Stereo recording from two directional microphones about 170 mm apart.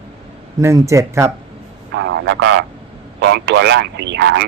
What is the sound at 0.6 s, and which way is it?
Speech, 15° right (ahead or behind).